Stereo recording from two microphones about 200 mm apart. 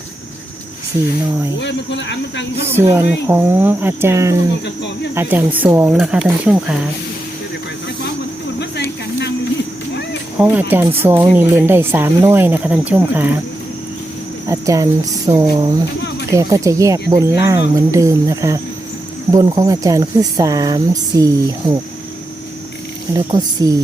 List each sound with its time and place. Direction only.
1.6 s a man's voice: 60° left (ahead or behind)
2.6 s speech: 10° right (ahead or behind)
9.1 s a sound: 60° left (ahead or behind)
10.3 s speech: 10° right (ahead or behind)
14.4 s speech: 15° right (ahead or behind)
23.1 s speech: 20° right (ahead or behind)